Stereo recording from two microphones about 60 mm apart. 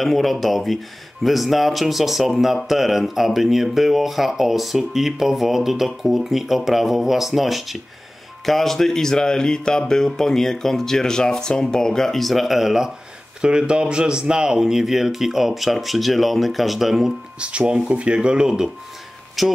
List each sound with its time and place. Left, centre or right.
0.0 s speech: centre
17.4 s speech: centre